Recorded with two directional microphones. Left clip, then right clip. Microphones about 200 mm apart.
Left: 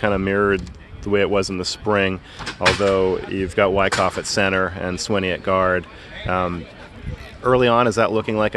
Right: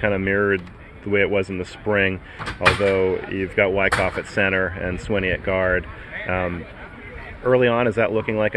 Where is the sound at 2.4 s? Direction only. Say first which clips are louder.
Right 1 dB; 45° right (ahead or behind).